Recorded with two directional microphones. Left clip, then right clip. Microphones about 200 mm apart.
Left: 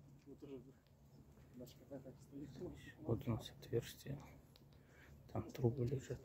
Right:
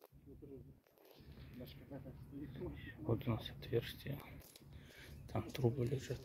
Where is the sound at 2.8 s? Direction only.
10° left (ahead or behind).